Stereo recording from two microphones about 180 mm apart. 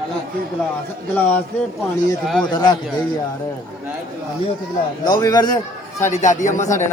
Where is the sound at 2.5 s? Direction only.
25° left (ahead or behind).